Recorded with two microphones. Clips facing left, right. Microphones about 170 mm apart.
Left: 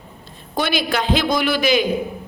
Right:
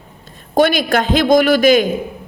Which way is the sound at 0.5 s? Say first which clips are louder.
Right 7 dB; 45° right (ahead or behind).